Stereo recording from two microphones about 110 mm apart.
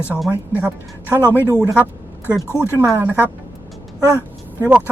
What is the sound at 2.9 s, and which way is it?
Speech, 20° right (ahead or behind).